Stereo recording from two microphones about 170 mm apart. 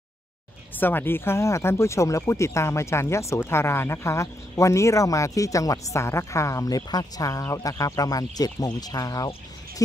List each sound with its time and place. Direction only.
0.7 s speech: 10° left (ahead or behind)